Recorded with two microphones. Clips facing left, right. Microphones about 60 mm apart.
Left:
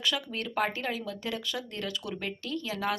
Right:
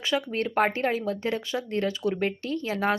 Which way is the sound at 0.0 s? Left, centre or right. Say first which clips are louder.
Right 5 dB; right.